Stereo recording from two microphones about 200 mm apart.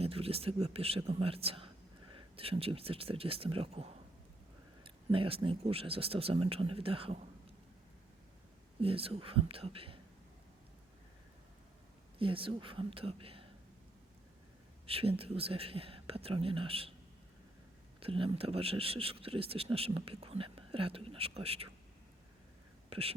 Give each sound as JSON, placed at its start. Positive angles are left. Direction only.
{"t": 0.0, "sound": "speech", "side_deg": -30}
{"t": 8.8, "sound": "speech", "side_deg": -30}
{"t": 12.2, "sound": "speech", "side_deg": -25}
{"t": 14.8, "sound": "speech", "side_deg": -30}
{"t": 18.0, "sound": "speech", "side_deg": -25}
{"t": 22.9, "sound": "speech", "side_deg": -30}